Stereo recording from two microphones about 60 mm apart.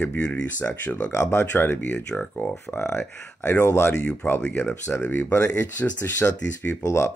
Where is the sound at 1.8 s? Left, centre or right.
Left.